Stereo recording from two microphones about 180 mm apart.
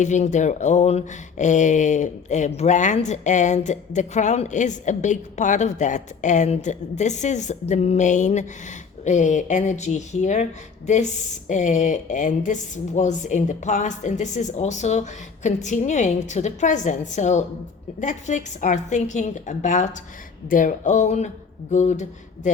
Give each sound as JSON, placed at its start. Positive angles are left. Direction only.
{"t": 0.0, "sound": "a woman's voice", "side_deg": 40}